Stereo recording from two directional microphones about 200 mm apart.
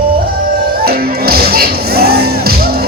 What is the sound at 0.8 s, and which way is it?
Music, 50° right (ahead or behind).